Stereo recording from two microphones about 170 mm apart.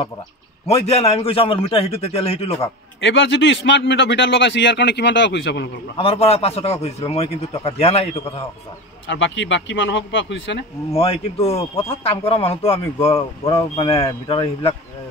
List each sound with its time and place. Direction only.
0.7 s a man's voice: 35° left (ahead or behind)
3.0 s a man's voice: 90° left
5.9 s a man's voice: 35° left (ahead or behind)
9.0 s a man's voice: 90° left
10.9 s a man's voice: 35° left (ahead or behind)